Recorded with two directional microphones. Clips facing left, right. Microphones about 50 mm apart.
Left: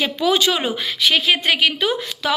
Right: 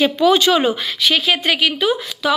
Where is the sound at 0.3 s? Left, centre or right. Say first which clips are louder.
Right 4 dB; centre.